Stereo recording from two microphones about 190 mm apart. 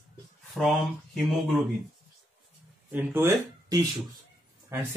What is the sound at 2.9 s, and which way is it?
Speech, 15° right (ahead or behind).